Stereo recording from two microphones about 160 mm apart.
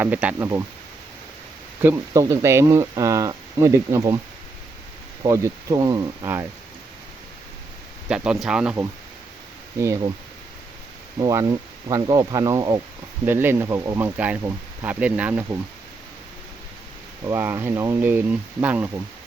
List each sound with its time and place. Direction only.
0.0 s speech: 10° right (ahead or behind)
1.8 s speech: 20° right (ahead or behind)
5.2 s speech: 20° right (ahead or behind)
8.1 s speech: 5° right (ahead or behind)
11.2 s speech: 25° right (ahead or behind)
17.2 s speech: 15° right (ahead or behind)